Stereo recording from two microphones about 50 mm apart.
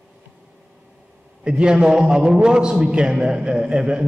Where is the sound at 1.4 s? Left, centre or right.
Centre.